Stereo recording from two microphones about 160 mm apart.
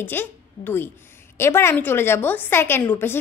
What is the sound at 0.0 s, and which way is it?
A woman's voice, 15° left (ahead or behind).